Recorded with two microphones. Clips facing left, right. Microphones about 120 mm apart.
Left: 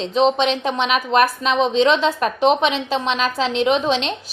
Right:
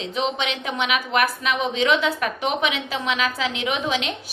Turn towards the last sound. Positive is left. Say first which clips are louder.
# left 7 dB
turn(degrees=30)  # may be behind; listen again after turning